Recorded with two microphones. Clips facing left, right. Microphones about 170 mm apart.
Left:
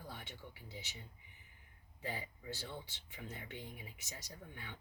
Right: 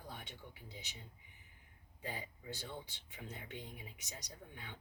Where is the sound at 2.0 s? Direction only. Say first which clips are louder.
Left 1 dB; 15° right (ahead or behind).